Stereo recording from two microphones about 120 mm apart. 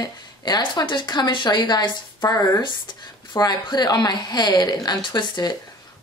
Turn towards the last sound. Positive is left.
turn(degrees=40)  # may be behind; listen again after turning